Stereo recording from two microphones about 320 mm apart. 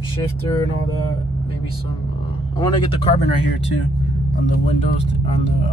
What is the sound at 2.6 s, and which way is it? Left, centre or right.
Speech, centre.